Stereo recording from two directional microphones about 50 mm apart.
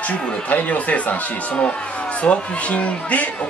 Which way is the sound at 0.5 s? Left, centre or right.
Left.